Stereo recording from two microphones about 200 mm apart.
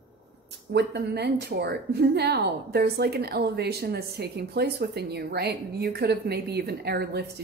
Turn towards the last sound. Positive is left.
turn(degrees=-55)  # may be behind; listen again after turning